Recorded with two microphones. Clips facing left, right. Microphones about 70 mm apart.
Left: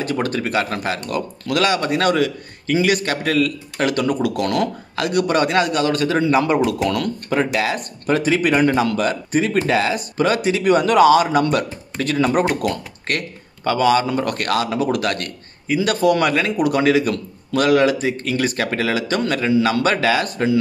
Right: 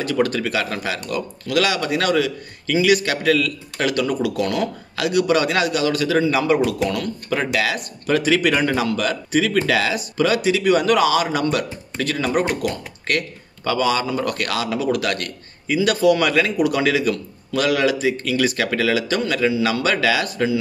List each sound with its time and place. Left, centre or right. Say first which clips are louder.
0.0 s a man's voice: right 1 dB; left
4.9 s a man's voice: even; left